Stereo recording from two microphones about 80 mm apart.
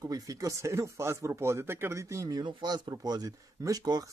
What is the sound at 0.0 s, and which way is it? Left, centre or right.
Speech, right.